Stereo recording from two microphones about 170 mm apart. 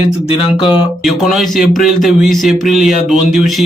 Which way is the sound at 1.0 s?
Centre (ahead or behind).